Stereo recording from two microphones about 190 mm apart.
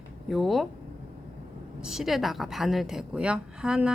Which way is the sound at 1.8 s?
Centre (ahead or behind).